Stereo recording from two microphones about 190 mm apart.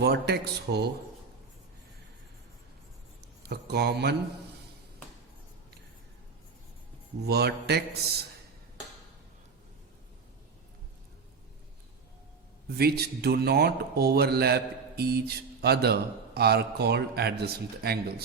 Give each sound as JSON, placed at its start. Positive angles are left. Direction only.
{"t": 0.0, "sound": "speech", "side_deg": -60}
{"t": 3.4, "sound": "speech", "side_deg": -60}
{"t": 7.3, "sound": "speech", "side_deg": -60}
{"t": 12.6, "sound": "speech", "side_deg": -55}